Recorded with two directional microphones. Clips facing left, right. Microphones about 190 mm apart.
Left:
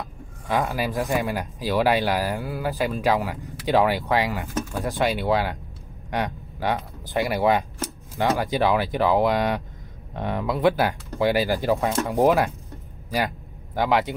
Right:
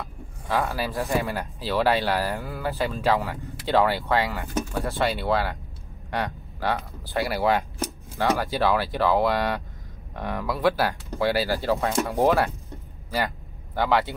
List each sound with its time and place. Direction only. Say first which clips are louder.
0.5 s speech: left 2 dB; 15° left (ahead or behind)
13.7 s speech: left 1 dB; 15° left (ahead or behind)